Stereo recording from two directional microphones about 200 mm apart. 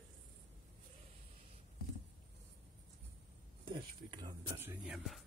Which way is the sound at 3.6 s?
25° right (ahead or behind).